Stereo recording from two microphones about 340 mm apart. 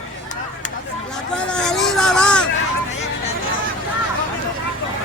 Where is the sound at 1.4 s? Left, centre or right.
Centre.